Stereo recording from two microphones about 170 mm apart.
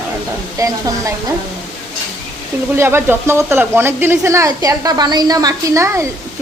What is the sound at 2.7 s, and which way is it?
Speech, 15° right (ahead or behind).